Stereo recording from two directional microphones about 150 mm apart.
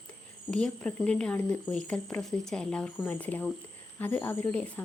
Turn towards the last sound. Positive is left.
turn(degrees=10)  # may be behind; listen again after turning